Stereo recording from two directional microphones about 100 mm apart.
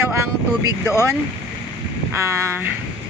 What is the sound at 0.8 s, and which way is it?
Speech, 25° left (ahead or behind).